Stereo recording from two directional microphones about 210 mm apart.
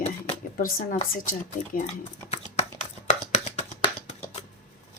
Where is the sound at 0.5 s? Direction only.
45° left (ahead or behind).